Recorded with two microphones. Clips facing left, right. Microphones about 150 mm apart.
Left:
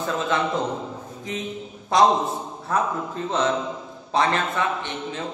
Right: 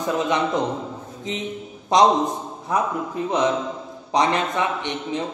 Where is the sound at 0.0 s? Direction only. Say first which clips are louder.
Right 2 dB; 15° right (ahead or behind).